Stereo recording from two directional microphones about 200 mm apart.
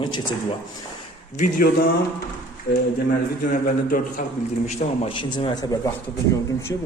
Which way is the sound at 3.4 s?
45° left (ahead or behind).